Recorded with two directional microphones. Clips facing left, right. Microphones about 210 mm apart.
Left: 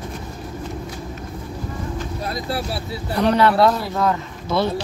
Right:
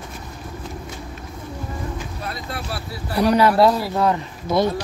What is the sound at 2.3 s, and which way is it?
Vehicle, 30° left (ahead or behind).